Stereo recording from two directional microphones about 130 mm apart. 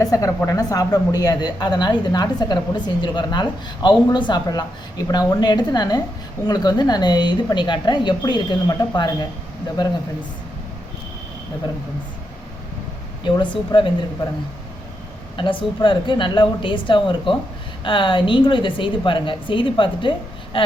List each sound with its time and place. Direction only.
0.0 s a woman's voice: 25° left (ahead or behind)
13.2 s a woman's voice: 40° left (ahead or behind)
15.4 s a woman's voice: 40° left (ahead or behind)